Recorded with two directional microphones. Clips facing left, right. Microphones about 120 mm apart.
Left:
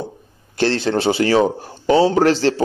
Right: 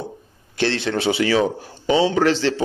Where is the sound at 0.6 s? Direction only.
35° left (ahead or behind).